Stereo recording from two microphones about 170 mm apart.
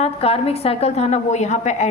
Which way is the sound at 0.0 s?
35° left (ahead or behind).